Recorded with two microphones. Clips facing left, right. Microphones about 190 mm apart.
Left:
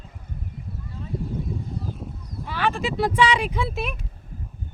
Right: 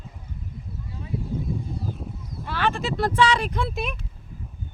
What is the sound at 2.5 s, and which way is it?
Speech, 10° left (ahead or behind).